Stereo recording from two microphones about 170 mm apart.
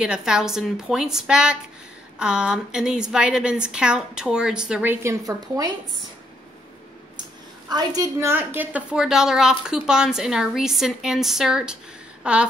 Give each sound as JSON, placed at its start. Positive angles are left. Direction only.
{"t": 0.0, "sound": "a woman's voice", "side_deg": -5}
{"t": 5.0, "sound": "speech", "side_deg": -20}
{"t": 7.7, "sound": "a woman's voice", "side_deg": -20}